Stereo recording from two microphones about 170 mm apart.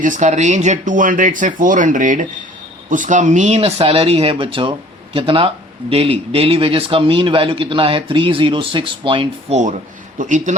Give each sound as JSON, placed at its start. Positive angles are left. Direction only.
{"t": 0.0, "sound": "a man's voice", "side_deg": -45}
{"t": 10.2, "sound": "speech", "side_deg": -50}